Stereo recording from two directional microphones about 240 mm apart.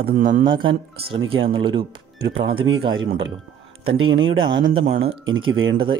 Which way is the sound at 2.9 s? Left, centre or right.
Right.